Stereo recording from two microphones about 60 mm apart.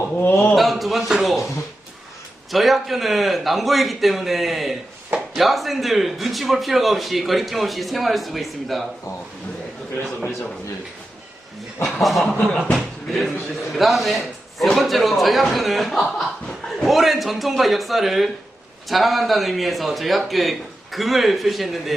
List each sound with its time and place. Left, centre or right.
0.2 s a man's voice: left
0.5 s a man's voice: centre
2.5 s speech: centre
11.8 s speech: centre